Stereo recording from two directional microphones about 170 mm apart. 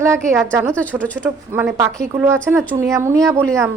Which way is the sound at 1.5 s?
10° right (ahead or behind).